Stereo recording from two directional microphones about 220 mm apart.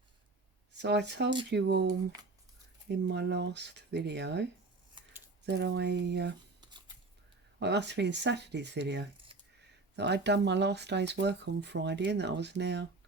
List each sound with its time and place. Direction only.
0.8 s speech: 50° right (ahead or behind)
5.5 s speech: 50° right (ahead or behind)
6.6 s scissors: 20° right (ahead or behind)
7.6 s speech: 50° right (ahead or behind)